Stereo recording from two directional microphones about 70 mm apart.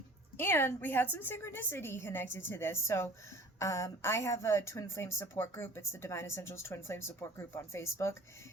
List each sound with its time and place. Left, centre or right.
0.3 s a woman's voice: left